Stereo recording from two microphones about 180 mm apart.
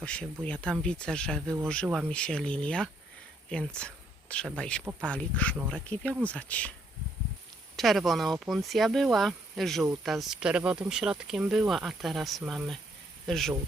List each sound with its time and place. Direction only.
0.0 s speech: 5° left (ahead or behind)
7.8 s speech: centre (ahead or behind)